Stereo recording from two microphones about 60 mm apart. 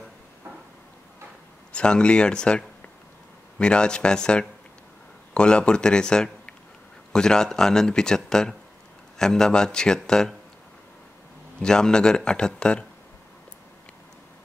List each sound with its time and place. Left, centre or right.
1.7 s speech: centre
11.6 s speech: centre